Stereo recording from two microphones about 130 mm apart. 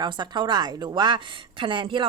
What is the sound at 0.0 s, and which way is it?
A woman's voice, 35° right (ahead or behind).